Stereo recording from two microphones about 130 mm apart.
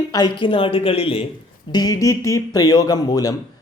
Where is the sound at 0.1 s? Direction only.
35° left (ahead or behind).